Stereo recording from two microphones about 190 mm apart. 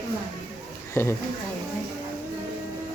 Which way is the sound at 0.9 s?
15° left (ahead or behind).